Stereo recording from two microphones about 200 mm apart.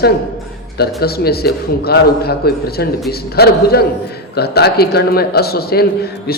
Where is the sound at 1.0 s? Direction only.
50° left (ahead or behind).